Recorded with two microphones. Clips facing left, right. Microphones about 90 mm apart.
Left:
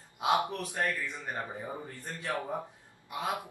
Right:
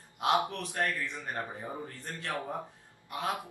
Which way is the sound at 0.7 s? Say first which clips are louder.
Right 1 dB; 15° left (ahead or behind).